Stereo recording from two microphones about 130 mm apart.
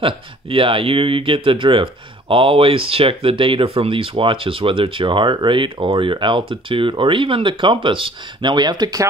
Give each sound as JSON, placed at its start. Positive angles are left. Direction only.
{"t": 0.0, "sound": "speech", "side_deg": -45}